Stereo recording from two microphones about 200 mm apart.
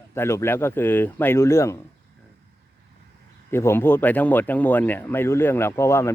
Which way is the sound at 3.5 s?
10° left (ahead or behind).